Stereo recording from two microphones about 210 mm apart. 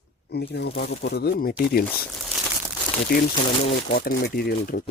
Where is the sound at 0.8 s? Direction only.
50° left (ahead or behind).